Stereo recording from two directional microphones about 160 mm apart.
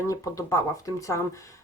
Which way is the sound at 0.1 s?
20° left (ahead or behind).